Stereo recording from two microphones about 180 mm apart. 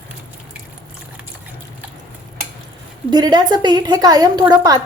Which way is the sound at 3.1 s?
25° right (ahead or behind).